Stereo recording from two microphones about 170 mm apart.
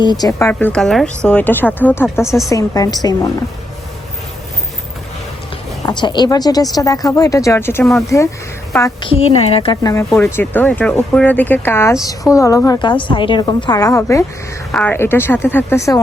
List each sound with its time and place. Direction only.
0.0 s speech: 25° left (ahead or behind)
5.8 s speech: 25° left (ahead or behind)
9.0 s speech: 35° left (ahead or behind); by 14.3 s 20° left (ahead or behind)
14.7 s speech: 5° left (ahead or behind)